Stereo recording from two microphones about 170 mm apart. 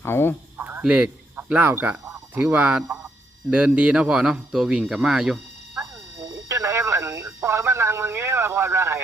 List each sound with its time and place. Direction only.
0.0 s speech: 15° left (ahead or behind)
0.5 s cricket: 10° right (ahead or behind)
3.5 s speech: 5° right (ahead or behind)
6.2 s radio: 15° right (ahead or behind)